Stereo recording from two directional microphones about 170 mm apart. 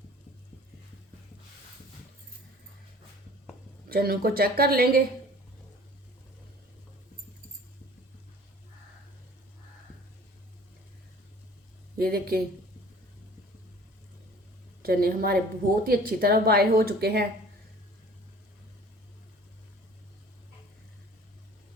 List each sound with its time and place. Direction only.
3.8 s speech: 65° right (ahead or behind)
11.9 s speech: 60° right (ahead or behind)
14.8 s a woman's voice: 65° right (ahead or behind)